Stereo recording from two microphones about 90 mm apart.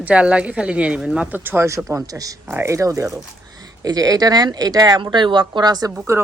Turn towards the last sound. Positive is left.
turn(degrees=-50)  # may be behind; listen again after turning